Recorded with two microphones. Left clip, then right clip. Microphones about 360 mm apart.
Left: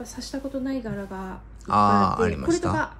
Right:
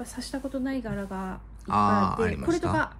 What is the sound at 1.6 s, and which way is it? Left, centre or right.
Speech, centre.